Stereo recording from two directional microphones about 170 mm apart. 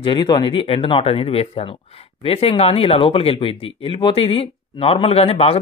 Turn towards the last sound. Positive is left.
turn(degrees=35)  # may be behind; listen again after turning